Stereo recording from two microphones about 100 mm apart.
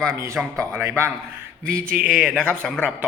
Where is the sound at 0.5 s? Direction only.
25° right (ahead or behind).